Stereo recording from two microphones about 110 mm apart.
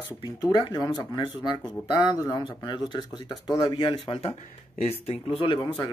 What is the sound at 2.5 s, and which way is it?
Speech, 45° left (ahead or behind).